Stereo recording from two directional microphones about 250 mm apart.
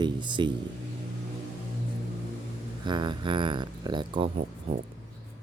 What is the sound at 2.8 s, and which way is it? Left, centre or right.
Speech, centre.